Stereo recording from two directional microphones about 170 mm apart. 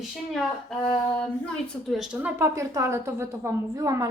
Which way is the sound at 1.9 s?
Centre (ahead or behind).